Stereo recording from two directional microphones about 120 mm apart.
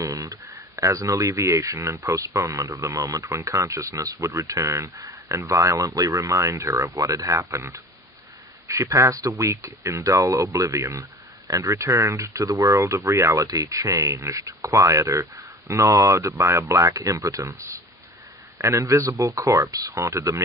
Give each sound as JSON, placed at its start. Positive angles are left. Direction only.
{"t": 0.0, "sound": "speech", "side_deg": -30}
{"t": 8.6, "sound": "speech", "side_deg": -25}